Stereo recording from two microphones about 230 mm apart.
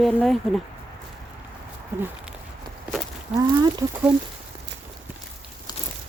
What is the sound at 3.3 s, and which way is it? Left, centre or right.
Speech, centre.